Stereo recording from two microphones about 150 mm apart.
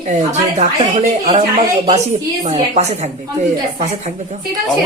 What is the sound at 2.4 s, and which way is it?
Speech, 45° right (ahead or behind).